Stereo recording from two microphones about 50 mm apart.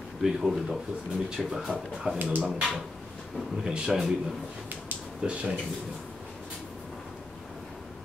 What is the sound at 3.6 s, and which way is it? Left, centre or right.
Speech, centre.